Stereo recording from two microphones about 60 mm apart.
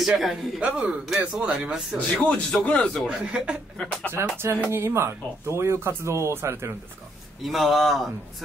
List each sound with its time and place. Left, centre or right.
0.0 s a man's voice: centre
0.6 s a man's voice: centre
2.1 s a man's voice: centre
3.1 s a man's voice: centre
3.7 s a man's voice: centre
4.1 s speech: right
7.4 s a man's voice: centre